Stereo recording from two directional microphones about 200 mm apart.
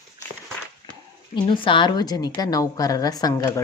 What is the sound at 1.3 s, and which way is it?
Speech, 25° left (ahead or behind).